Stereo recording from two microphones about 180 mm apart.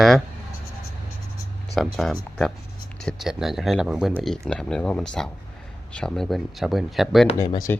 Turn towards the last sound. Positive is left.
turn(degrees=20)  # may be behind; listen again after turning